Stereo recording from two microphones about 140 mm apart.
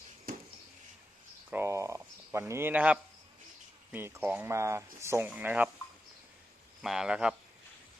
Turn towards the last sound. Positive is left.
turn(degrees=-5)  # may be behind; listen again after turning